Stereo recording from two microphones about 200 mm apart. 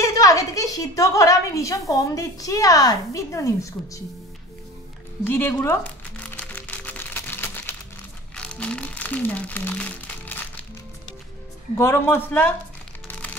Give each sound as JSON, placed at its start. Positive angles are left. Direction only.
{"t": 0.0, "sound": "a woman's voice", "side_deg": 15}
{"t": 5.2, "sound": "crumpling", "side_deg": 10}
{"t": 11.7, "sound": "a woman's voice", "side_deg": 10}
{"t": 13.1, "sound": "a sound", "side_deg": 10}